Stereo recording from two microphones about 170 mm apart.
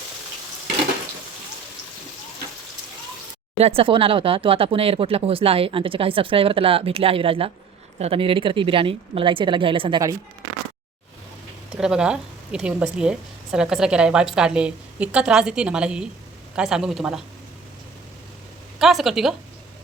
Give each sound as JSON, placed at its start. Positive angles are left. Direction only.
{"t": 3.6, "sound": "speech", "side_deg": -35}
{"t": 11.7, "sound": "a woman's voice", "side_deg": -5}
{"t": 18.8, "sound": "a woman's voice", "side_deg": 0}